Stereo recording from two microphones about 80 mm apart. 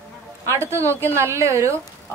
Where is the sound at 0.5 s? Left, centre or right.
Right.